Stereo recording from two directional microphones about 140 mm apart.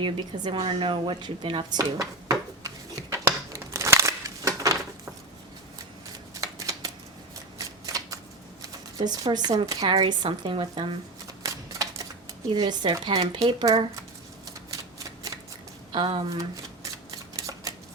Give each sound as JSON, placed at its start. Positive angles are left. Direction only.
{"t": 0.0, "sound": "a woman's voice", "side_deg": -35}
{"t": 2.0, "sound": "a sound", "side_deg": -25}
{"t": 6.4, "sound": "shuffling cards", "side_deg": -25}
{"t": 9.0, "sound": "a woman's voice", "side_deg": -30}
{"t": 11.4, "sound": "typewriter", "side_deg": -25}
{"t": 12.5, "sound": "a woman's voice", "side_deg": -30}
{"t": 14.9, "sound": "shuffling cards", "side_deg": -25}
{"t": 15.9, "sound": "speech", "side_deg": -35}
{"t": 16.4, "sound": "shuffling cards", "side_deg": -25}